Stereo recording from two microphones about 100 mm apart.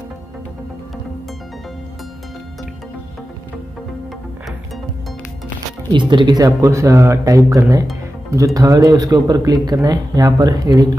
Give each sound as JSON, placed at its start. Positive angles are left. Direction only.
{"t": 5.9, "sound": "speech", "side_deg": -50}